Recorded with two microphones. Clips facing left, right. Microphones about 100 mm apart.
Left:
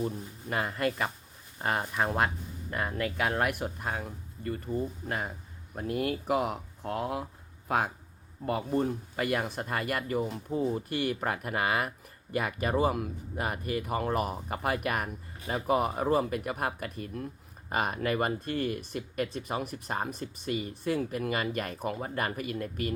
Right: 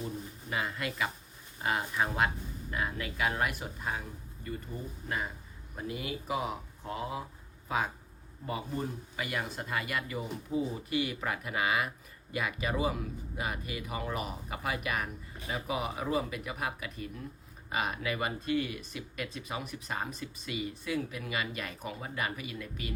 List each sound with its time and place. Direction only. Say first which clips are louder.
0.5 s speech: left 5 dB; 50° left (ahead or behind)
5.0 s speech: left 2 dB; 55° left (ahead or behind)